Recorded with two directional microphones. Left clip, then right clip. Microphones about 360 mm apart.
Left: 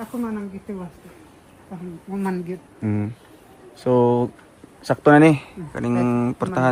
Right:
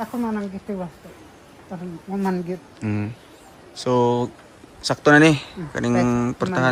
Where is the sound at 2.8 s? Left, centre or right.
Centre.